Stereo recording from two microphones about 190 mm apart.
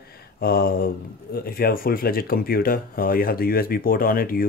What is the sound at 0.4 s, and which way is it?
Speech, 50° left (ahead or behind).